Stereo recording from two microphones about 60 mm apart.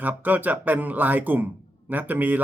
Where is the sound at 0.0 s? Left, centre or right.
Right.